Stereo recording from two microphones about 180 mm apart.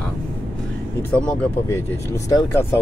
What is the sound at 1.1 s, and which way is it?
Speech, 5° left (ahead or behind).